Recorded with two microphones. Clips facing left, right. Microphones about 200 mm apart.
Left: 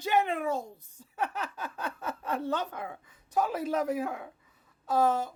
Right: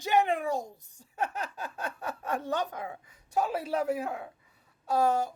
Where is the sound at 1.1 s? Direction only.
40° right (ahead or behind).